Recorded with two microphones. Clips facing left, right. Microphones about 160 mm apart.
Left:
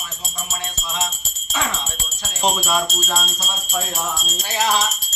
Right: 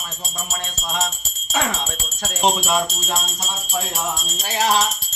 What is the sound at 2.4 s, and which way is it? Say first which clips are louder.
Music: right 1 dB; 15° right (ahead or behind).